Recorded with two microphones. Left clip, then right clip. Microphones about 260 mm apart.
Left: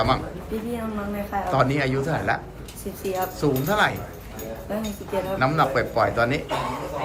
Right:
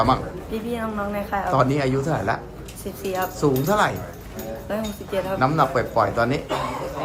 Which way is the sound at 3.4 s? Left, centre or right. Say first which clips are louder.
Right 2 dB; centre.